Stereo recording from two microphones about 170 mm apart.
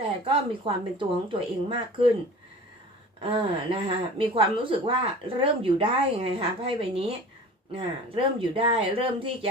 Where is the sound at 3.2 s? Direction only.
35° right (ahead or behind).